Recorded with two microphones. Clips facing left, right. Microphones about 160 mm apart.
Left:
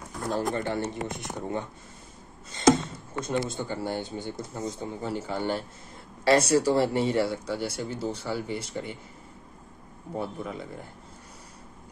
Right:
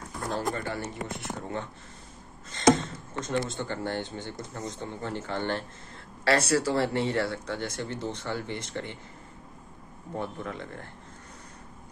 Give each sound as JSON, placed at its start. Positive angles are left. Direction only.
{"t": 0.3, "sound": "speech", "side_deg": 20}
{"t": 3.2, "sound": "speech", "side_deg": 10}
{"t": 10.1, "sound": "speech", "side_deg": 10}